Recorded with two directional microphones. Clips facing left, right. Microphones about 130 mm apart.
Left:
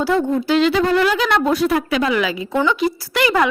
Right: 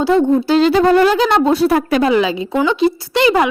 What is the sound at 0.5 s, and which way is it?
A woman's voice, 40° right (ahead or behind).